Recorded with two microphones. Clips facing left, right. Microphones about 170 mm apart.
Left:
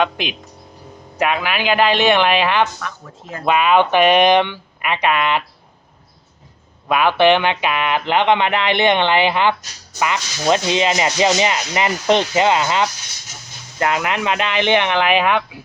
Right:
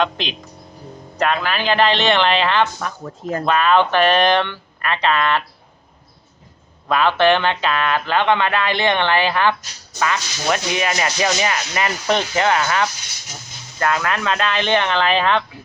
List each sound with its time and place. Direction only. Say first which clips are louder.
0.0 s speech: left 1 dB; 10° left (ahead or behind)
2.7 s speech: right 3 dB; 40° right (ahead or behind)
3.4 s speech: left 2 dB; 10° left (ahead or behind)
6.8 s speech: left 2 dB; 15° left (ahead or behind)